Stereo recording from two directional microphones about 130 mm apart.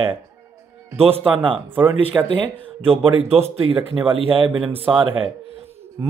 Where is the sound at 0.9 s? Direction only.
50° right (ahead or behind).